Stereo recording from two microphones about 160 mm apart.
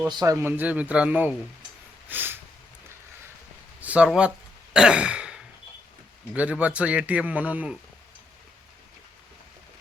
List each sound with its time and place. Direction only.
0.1 s a man's voice: 25° right (ahead or behind)
0.3 s speech: 10° right (ahead or behind)
2.0 s a sound: 10° right (ahead or behind)
3.8 s speech: 10° right (ahead or behind)
4.7 s throat clearing: 5° right (ahead or behind)
6.3 s speech: 10° right (ahead or behind)